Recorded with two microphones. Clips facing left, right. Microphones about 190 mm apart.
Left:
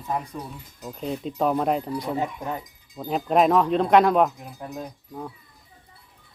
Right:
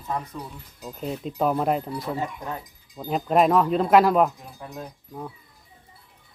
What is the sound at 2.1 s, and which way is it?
Speech, 15° left (ahead or behind).